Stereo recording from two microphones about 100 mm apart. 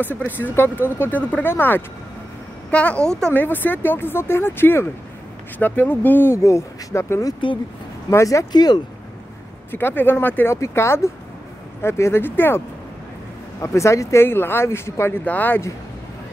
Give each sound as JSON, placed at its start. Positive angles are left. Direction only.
{"t": 0.2, "sound": "speech", "side_deg": 20}
{"t": 8.5, "sound": "speech", "side_deg": 45}
{"t": 9.7, "sound": "speech", "side_deg": 20}